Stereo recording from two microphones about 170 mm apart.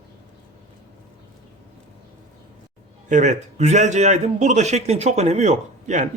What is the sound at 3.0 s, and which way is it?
A man's voice, 45° right (ahead or behind).